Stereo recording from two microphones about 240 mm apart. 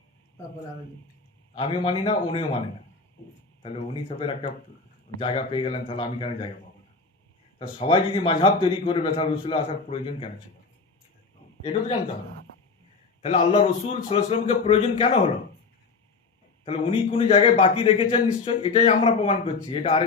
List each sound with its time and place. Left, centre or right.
1.5 s a man's voice: left
7.8 s a man's voice: left
13.2 s a man's voice: left
16.6 s a man's voice: left